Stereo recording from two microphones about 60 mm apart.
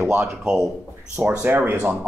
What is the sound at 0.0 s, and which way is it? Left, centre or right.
A man's voice, centre.